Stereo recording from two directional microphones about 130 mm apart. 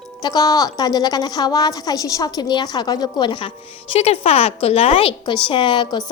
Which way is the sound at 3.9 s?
50° left (ahead or behind).